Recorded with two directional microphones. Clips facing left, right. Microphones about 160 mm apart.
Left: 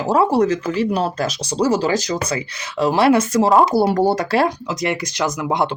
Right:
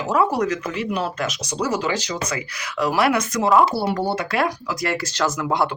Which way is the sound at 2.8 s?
25° left (ahead or behind).